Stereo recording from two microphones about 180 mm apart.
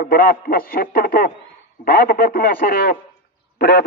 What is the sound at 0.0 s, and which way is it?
A man's voice, 55° left (ahead or behind).